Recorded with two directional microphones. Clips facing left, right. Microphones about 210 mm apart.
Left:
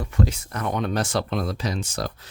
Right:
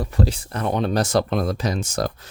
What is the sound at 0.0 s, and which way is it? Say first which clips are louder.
Speech: right 2 dB; 35° right (ahead or behind).